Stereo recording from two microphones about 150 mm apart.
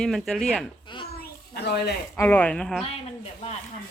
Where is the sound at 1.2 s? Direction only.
90° left.